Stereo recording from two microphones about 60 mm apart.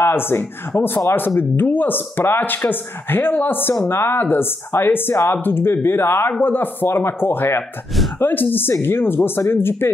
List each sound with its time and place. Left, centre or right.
0.0 s speech: left